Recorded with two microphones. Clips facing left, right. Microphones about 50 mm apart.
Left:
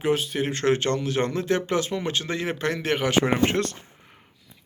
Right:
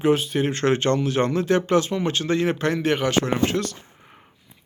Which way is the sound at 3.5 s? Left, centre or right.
Left.